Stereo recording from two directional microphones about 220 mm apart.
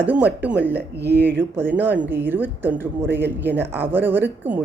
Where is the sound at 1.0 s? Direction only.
50° right (ahead or behind).